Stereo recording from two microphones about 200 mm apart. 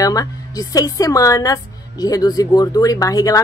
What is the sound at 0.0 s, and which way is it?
A woman's voice, 15° left (ahead or behind).